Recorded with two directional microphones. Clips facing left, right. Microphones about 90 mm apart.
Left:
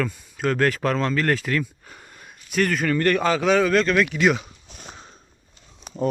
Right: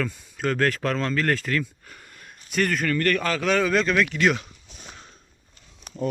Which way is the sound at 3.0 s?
25° left (ahead or behind).